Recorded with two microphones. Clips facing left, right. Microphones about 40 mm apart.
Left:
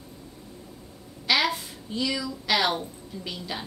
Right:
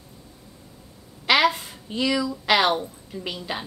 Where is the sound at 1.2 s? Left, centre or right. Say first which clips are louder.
Right 5 dB; right.